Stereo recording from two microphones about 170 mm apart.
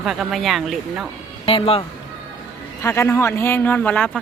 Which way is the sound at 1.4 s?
35° left (ahead or behind).